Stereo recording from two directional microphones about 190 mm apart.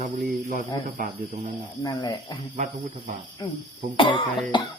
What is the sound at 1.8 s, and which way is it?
Speech, 20° left (ahead or behind).